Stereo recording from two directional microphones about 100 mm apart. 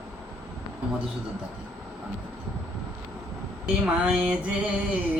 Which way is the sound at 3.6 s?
10° right (ahead or behind).